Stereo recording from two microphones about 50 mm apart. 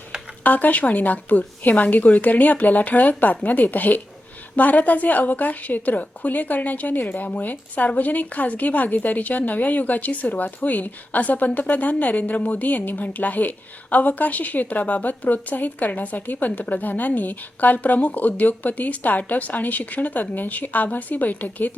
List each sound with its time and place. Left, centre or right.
0.4 s a woman's voice: left